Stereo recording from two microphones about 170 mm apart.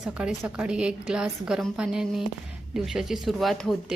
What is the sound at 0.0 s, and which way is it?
A woman's voice, 5° right (ahead or behind).